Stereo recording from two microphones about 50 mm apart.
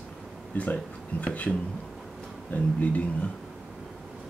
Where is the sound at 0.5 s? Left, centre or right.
Left.